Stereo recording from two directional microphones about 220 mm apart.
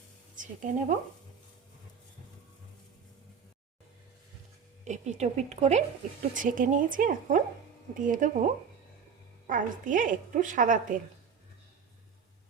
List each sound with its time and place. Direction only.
0.3 s a woman's voice: 35° right (ahead or behind)
4.9 s a woman's voice: 30° right (ahead or behind)
9.5 s a woman's voice: 35° right (ahead or behind)